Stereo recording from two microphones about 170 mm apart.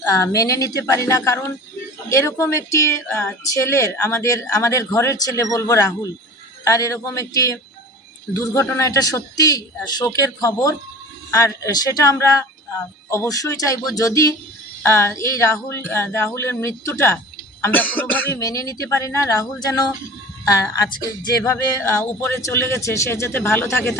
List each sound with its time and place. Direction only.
0.0 s a man's voice: 20° left (ahead or behind)